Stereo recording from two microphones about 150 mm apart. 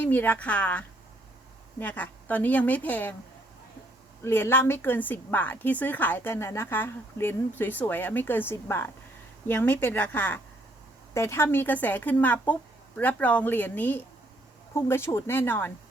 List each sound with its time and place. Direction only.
0.0 s a woman's voice: 10° left (ahead or behind)
4.2 s a woman's voice: 15° left (ahead or behind)